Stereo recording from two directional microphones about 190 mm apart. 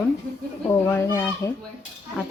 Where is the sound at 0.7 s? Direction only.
15° left (ahead or behind).